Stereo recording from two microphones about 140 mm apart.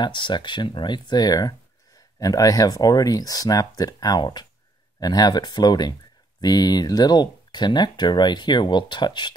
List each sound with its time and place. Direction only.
0.0 s speech: 35° left (ahead or behind)